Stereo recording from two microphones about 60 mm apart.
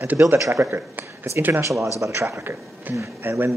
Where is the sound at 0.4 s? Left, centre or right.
Right.